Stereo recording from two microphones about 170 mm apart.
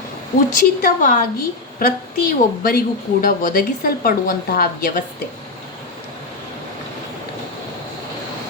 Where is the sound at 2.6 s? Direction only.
60° left (ahead or behind).